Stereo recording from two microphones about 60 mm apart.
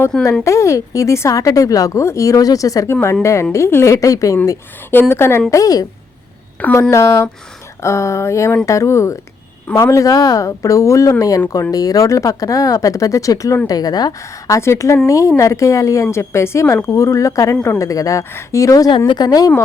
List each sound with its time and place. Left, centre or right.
0.4 s a woman's voice: left
1.3 s speech: left
2.9 s a woman's voice: left
4.9 s a woman's voice: left
5.5 s a woman's voice: left
6.6 s speech: left
6.9 s a woman's voice: left
9.7 s speech: left
13.7 s a woman's voice: left
14.6 s a woman's voice: left
16.1 s a woman's voice: left